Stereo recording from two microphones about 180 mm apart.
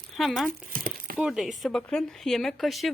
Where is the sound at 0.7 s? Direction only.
50° right (ahead or behind).